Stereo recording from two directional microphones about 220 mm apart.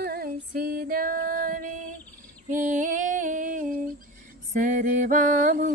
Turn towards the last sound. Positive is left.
turn(degrees=-35)  # may be behind; listen again after turning